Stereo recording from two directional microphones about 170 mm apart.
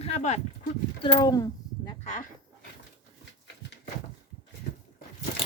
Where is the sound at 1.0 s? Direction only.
25° left (ahead or behind).